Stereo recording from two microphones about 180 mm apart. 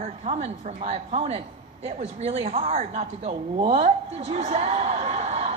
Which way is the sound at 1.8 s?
35° right (ahead or behind).